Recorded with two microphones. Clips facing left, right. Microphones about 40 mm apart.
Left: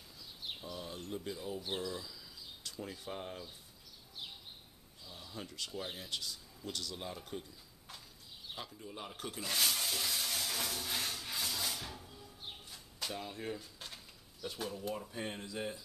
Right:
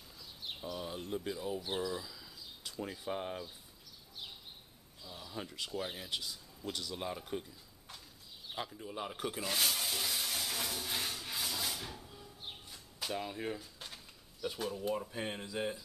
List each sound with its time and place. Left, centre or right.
0.2 s a sound: centre
0.7 s speech: centre
5.0 s speech: centre
8.5 s speech: centre
9.5 s music: centre
13.6 s a sound: centre
14.8 s speech: centre